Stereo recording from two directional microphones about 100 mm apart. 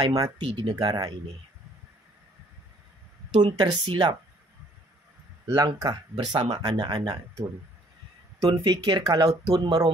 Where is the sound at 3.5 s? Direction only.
50° right (ahead or behind).